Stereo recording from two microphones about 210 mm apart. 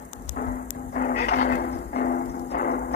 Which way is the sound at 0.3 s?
45° left (ahead or behind).